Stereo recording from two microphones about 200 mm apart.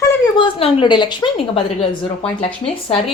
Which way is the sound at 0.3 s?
25° left (ahead or behind).